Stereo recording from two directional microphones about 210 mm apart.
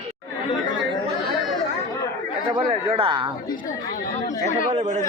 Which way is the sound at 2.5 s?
25° right (ahead or behind).